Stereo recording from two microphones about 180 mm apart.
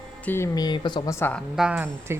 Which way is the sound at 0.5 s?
25° left (ahead or behind).